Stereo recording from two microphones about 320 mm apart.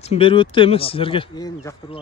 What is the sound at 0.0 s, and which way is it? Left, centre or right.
Speech, centre.